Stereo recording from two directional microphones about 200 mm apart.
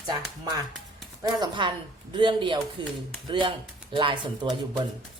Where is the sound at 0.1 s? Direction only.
20° right (ahead or behind).